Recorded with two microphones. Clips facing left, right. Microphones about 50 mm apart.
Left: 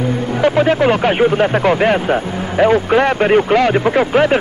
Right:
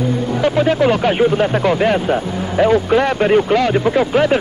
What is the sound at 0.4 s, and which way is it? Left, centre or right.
Speech, left.